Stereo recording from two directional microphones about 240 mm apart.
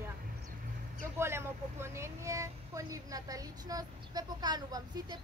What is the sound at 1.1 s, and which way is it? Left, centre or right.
Speech, centre.